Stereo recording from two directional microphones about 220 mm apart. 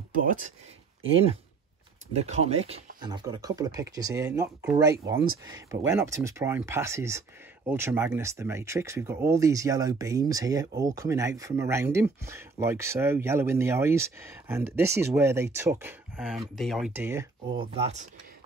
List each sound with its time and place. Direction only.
0.1 s speech: 40° right (ahead or behind)
2.1 s speech: 30° right (ahead or behind); by 17.3 s 10° right (ahead or behind)
17.6 s speech: 25° right (ahead or behind)